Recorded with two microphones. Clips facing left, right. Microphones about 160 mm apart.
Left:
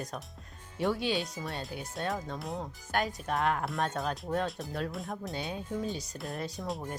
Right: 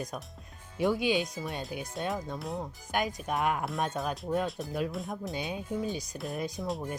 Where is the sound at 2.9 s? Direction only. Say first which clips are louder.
Even; 15° right (ahead or behind).